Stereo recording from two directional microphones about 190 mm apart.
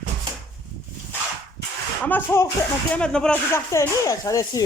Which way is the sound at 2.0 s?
10° left (ahead or behind).